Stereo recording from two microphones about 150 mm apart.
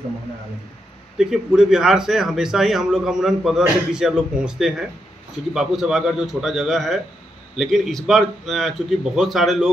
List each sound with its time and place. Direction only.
1.1 s speech: 5° right (ahead or behind)